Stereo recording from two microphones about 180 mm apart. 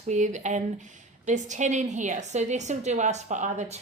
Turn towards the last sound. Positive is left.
turn(degrees=-40)  # may be behind; listen again after turning